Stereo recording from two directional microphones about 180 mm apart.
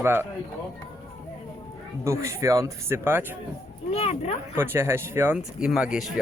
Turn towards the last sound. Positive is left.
turn(degrees=-5)  # may be behind; listen again after turning